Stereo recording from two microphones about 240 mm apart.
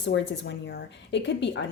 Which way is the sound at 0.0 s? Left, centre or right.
Left.